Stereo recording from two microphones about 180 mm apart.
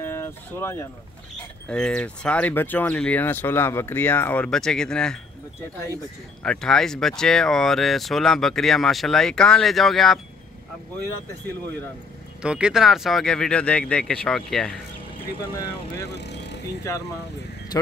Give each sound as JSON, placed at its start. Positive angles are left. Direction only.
{"t": 0.0, "sound": "a sound", "side_deg": 15}
{"t": 1.7, "sound": "speech", "side_deg": 5}
{"t": 6.4, "sound": "speech", "side_deg": 5}
{"t": 12.4, "sound": "speech", "side_deg": -5}
{"t": 16.2, "sound": "vehicle", "side_deg": 70}
{"t": 16.9, "sound": "speech", "side_deg": 20}